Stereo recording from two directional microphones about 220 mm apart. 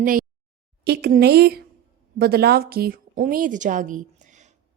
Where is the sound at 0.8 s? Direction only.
45° right (ahead or behind).